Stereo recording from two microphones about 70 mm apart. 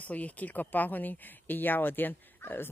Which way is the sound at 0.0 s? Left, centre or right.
Left.